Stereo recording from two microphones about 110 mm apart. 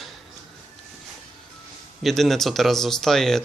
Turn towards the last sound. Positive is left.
turn(degrees=5)  # may be behind; listen again after turning